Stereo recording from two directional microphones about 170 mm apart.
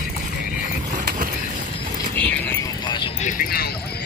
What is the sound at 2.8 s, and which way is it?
Music, 30° left (ahead or behind).